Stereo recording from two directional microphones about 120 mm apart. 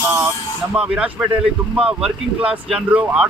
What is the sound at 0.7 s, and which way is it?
Speech, 10° right (ahead or behind).